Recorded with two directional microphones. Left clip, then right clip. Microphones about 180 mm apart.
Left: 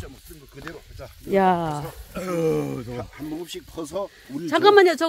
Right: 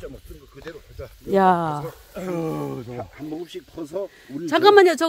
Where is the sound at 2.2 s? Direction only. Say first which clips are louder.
Left 4 dB; 45° left (ahead or behind).